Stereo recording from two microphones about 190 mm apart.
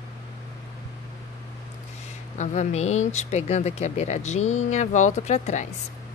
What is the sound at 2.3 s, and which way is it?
Speech, 40° left (ahead or behind).